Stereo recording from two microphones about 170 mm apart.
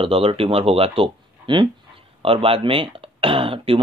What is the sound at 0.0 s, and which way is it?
Speech, 30° right (ahead or behind).